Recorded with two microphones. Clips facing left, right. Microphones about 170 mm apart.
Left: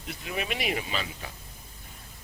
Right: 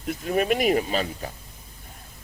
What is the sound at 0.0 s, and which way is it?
A man's voice, 45° right (ahead or behind).